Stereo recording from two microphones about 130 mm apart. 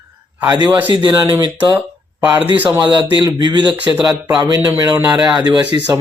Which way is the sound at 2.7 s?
30° right (ahead or behind).